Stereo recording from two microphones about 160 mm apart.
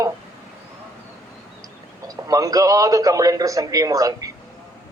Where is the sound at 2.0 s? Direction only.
20° right (ahead or behind).